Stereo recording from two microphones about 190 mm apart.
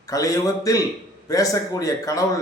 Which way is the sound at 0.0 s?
15° left (ahead or behind).